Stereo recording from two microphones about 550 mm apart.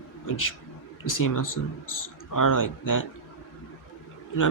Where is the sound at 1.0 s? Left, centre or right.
Left.